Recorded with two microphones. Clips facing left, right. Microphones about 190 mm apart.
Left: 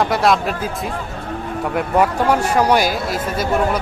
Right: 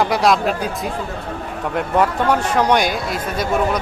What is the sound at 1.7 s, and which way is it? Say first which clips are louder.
Speech: left 1 dB; 10° left (ahead or behind).